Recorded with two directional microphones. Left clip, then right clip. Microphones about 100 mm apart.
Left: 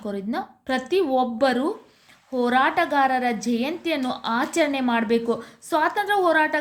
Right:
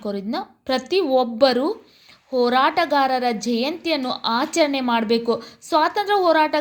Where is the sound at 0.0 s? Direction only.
25° right (ahead or behind).